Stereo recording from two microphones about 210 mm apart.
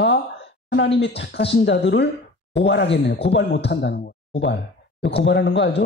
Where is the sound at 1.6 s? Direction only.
60° left (ahead or behind).